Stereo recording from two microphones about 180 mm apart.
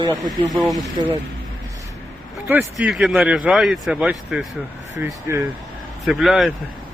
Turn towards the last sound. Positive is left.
turn(degrees=0)  # may be behind; listen again after turning